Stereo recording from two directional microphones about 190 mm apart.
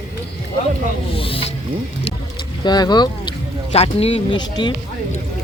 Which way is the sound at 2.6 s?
20° left (ahead or behind).